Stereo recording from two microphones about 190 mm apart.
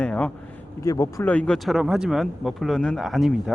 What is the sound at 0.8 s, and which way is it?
Speech, 15° left (ahead or behind).